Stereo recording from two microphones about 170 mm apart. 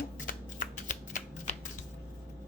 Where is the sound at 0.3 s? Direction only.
50° left (ahead or behind).